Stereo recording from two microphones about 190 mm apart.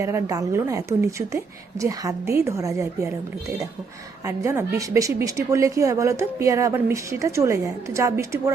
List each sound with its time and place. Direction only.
0.0 s a woman's voice: 15° right (ahead or behind)
4.3 s a woman's voice: 15° right (ahead or behind)